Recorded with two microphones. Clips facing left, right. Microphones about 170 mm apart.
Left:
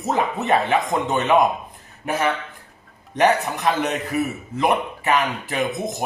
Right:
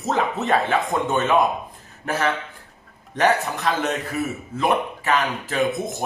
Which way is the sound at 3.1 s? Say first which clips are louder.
Left 2 dB; 15° left (ahead or behind).